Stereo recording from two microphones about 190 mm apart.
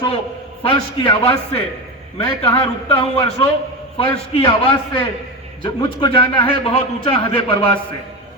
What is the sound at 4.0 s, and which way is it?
A man's voice, 30° left (ahead or behind).